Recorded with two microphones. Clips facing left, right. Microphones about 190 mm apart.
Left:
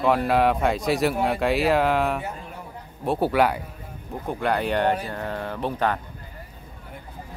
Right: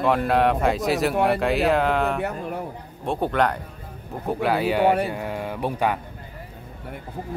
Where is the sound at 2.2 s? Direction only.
65° right (ahead or behind).